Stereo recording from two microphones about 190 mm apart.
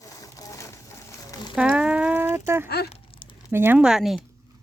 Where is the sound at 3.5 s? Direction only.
10° right (ahead or behind).